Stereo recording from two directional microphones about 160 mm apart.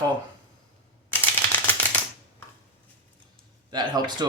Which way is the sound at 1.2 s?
10° left (ahead or behind).